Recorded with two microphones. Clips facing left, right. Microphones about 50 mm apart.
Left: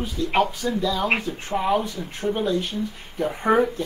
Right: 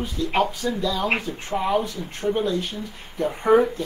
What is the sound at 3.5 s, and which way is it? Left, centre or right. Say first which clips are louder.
Speech: right 2 dB; left.